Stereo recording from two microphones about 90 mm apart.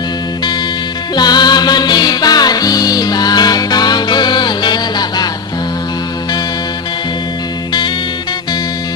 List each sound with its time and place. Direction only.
1.1 s music: 50° left (ahead or behind)